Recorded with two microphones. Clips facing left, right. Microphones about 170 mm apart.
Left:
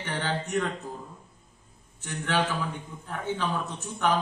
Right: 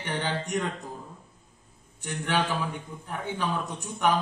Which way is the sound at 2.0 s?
15° right (ahead or behind).